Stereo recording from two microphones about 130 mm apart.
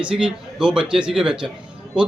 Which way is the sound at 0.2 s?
5° right (ahead or behind).